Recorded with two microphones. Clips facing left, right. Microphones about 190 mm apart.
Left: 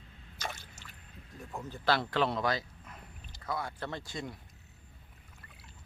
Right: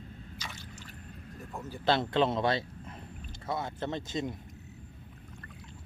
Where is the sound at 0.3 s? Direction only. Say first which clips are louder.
Left 6 dB; 50° left (ahead or behind).